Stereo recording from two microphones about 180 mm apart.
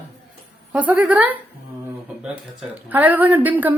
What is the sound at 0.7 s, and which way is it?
Speech, 10° right (ahead or behind).